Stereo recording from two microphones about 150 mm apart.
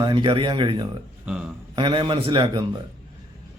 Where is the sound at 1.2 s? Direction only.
5° right (ahead or behind).